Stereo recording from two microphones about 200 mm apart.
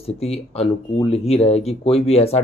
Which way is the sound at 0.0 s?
30° left (ahead or behind).